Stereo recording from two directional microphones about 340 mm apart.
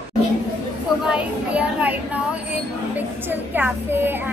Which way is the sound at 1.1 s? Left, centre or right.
Centre.